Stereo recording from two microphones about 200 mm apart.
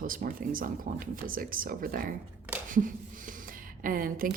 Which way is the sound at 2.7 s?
40° right (ahead or behind).